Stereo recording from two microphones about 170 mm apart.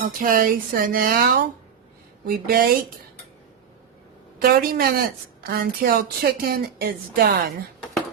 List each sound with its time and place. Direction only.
0.0 s speech: 55° right (ahead or behind)
4.4 s speech: 65° right (ahead or behind)